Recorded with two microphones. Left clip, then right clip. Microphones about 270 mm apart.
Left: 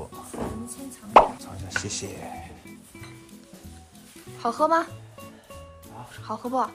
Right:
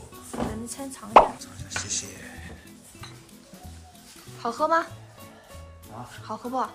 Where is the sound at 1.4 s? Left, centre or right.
Centre.